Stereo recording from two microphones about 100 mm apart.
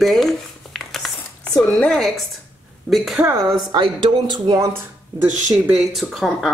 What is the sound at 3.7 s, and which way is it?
Speech, 50° right (ahead or behind).